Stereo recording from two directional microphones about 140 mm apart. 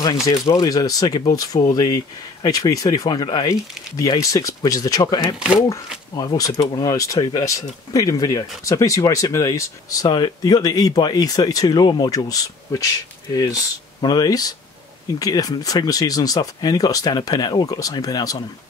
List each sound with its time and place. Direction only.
0.0 s speech: 25° left (ahead or behind)